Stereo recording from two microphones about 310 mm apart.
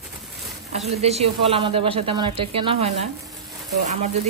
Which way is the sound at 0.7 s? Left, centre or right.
Right.